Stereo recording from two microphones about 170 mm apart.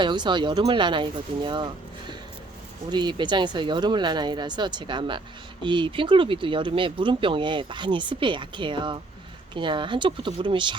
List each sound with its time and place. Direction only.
0.0 s speech: 25° right (ahead or behind)